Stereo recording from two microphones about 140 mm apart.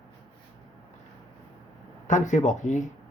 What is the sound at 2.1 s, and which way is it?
Speech, 60° left (ahead or behind).